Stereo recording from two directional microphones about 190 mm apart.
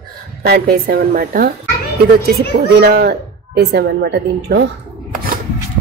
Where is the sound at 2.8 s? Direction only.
55° right (ahead or behind).